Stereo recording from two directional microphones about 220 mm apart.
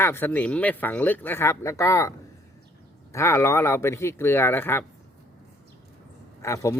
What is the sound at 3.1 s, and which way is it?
Speech, 15° left (ahead or behind).